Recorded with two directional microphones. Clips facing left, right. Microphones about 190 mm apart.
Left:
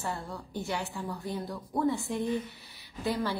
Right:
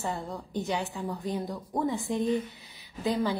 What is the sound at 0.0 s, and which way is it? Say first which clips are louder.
A woman's voice: right 3 dB; 20° right (ahead or behind).